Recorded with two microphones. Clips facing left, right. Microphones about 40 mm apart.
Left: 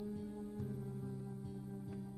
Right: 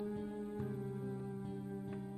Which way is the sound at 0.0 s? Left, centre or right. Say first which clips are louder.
Right 3 dB; right.